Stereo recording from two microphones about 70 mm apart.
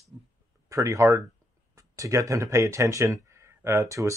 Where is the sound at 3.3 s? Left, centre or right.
Right.